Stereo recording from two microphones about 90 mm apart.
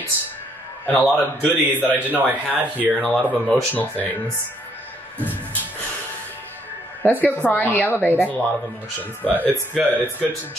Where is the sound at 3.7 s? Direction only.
20° left (ahead or behind).